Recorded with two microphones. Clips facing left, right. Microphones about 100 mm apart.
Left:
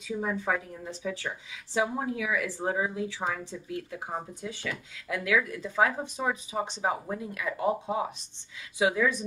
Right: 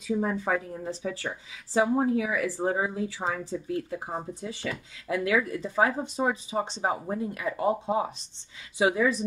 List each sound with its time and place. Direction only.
0.2 s a woman's voice: 40° right (ahead or behind)